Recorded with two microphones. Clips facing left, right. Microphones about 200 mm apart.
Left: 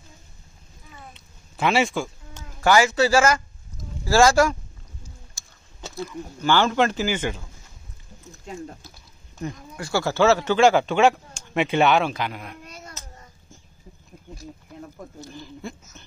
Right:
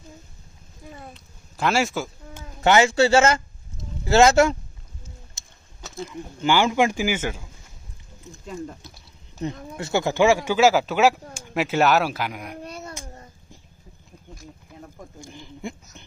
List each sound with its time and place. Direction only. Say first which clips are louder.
1.1 s a sound: even; centre (ahead or behind)
2.6 s speech: right 1 dB; 25° right (ahead or behind)
6.0 s speech: right 1 dB; 15° right (ahead or behind)
9.4 s speech: right 3 dB; 25° right (ahead or behind)
15.2 s speech: right 3 dB; 15° right (ahead or behind)